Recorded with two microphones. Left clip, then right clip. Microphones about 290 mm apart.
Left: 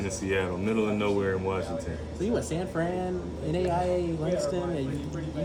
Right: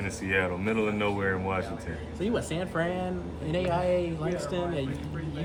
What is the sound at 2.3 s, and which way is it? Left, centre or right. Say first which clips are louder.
Speech: even; centre.